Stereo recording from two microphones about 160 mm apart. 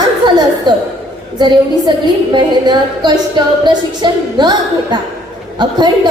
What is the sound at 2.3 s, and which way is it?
A woman's voice, 30° right (ahead or behind).